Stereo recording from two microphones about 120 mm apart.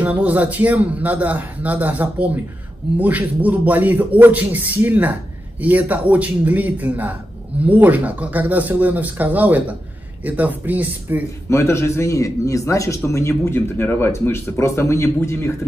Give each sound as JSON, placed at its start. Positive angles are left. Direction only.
{"t": 0.0, "sound": "speech", "side_deg": -10}
{"t": 11.4, "sound": "speech", "side_deg": 25}